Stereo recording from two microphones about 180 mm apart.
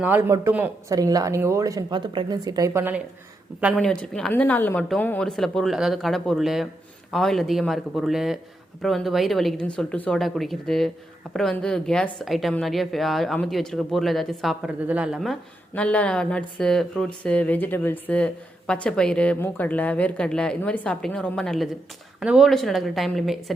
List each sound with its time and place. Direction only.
0.0 s speech: 10° right (ahead or behind)
3.8 s a woman's voice: 5° left (ahead or behind)